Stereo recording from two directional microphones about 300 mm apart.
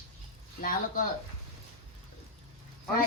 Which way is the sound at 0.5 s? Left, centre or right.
Left.